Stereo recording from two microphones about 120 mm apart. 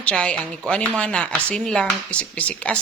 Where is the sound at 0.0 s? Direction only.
10° left (ahead or behind).